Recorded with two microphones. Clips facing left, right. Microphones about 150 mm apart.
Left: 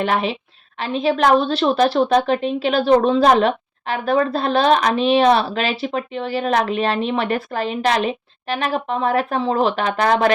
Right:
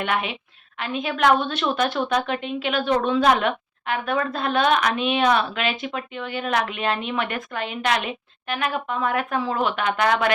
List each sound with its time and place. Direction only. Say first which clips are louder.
0.0 s a woman's voice: left 5 dB; 35° left (ahead or behind)